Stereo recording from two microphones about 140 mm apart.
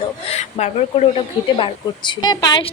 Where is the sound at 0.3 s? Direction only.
50° left (ahead or behind).